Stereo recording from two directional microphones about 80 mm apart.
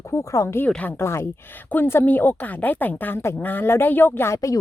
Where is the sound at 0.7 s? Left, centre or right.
Centre.